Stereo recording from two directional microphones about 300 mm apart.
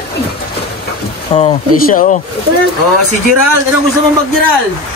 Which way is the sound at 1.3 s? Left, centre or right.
Left.